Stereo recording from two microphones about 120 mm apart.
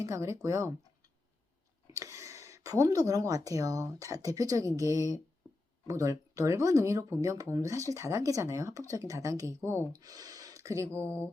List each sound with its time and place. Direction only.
0.0 s speech: 25° right (ahead or behind)
1.9 s speech: 25° right (ahead or behind)
9.9 s speech: 30° right (ahead or behind)
11.0 s a sound: 10° left (ahead or behind)